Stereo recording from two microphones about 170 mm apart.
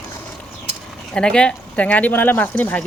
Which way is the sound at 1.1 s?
5° left (ahead or behind).